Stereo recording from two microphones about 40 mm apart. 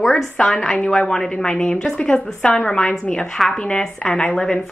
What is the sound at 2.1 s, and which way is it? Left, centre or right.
A woman's voice, left.